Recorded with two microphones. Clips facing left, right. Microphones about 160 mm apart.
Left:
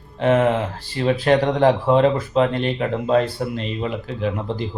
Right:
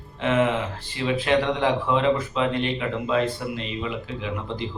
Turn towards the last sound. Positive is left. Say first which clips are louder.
# left 6 dB
turn(degrees=45)  # may be behind; listen again after turning